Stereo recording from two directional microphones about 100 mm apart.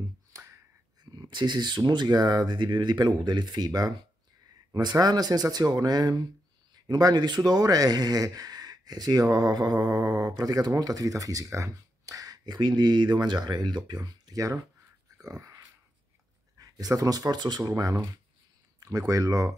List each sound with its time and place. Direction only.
0.3 s music: 30° right (ahead or behind)
1.1 s speech: 50° right (ahead or behind)
15.1 s dog: 35° right (ahead or behind)
16.6 s speech: 40° right (ahead or behind)